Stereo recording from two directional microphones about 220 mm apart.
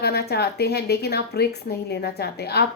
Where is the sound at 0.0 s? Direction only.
45° left (ahead or behind).